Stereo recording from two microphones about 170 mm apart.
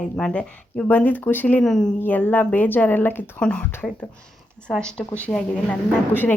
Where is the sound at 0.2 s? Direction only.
5° left (ahead or behind).